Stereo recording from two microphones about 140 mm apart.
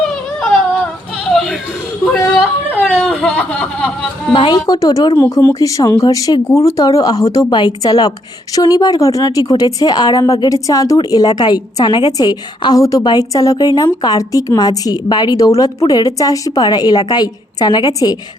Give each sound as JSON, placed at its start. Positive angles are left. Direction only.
{"t": 2.3, "sound": "whimper", "side_deg": -5}
{"t": 2.7, "sound": "a sound", "side_deg": 10}
{"t": 4.3, "sound": "a woman's voice", "side_deg": 35}
{"t": 5.3, "sound": "a woman's voice", "side_deg": 15}